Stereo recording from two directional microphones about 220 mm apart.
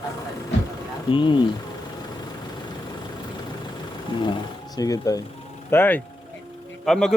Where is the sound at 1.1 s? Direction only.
20° left (ahead or behind).